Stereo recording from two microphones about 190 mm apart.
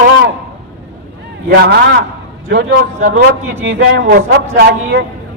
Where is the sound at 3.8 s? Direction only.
55° right (ahead or behind).